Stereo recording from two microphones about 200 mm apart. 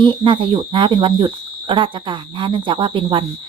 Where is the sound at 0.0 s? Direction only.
25° right (ahead or behind).